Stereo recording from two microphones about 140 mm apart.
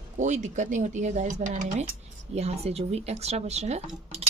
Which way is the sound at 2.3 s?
50° right (ahead or behind).